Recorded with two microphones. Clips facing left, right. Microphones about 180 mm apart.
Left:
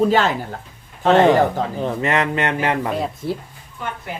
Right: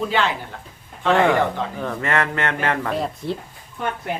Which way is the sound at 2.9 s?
5° left (ahead or behind).